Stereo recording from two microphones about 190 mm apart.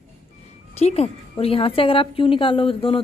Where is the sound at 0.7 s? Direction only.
35° left (ahead or behind).